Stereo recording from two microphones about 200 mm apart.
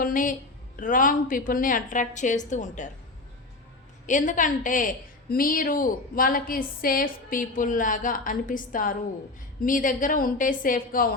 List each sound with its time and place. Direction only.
0.0 s a woman's voice: 40° left (ahead or behind)
4.0 s a woman's voice: 40° left (ahead or behind)